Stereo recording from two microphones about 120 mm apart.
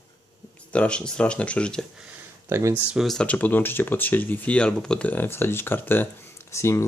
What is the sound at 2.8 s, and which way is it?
Speech, centre (ahead or behind).